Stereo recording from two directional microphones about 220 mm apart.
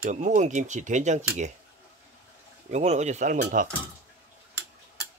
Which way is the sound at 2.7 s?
30° right (ahead or behind).